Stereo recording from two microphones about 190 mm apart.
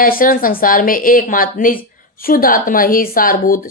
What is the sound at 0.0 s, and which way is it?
Speech, 45° left (ahead or behind).